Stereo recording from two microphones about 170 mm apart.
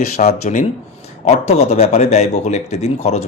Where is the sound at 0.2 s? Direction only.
40° left (ahead or behind).